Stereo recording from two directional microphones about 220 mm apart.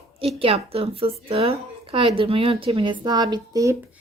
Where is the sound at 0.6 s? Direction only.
25° right (ahead or behind).